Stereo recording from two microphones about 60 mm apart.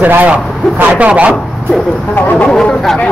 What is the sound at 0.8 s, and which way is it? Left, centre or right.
Speech, right.